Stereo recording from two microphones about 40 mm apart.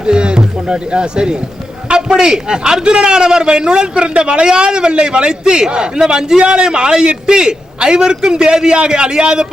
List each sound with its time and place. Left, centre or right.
0.0 s a man's voice: right